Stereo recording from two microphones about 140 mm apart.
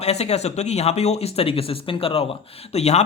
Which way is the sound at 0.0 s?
50° left (ahead or behind).